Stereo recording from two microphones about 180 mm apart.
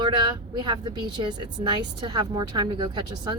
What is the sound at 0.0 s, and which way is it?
Speech, 25° right (ahead or behind).